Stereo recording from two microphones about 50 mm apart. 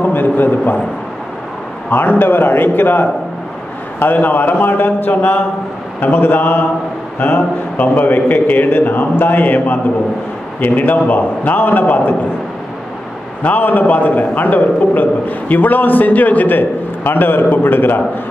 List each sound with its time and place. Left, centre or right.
0.0 s a sound: left
1.9 s a man's voice: left
13.4 s a man's voice: left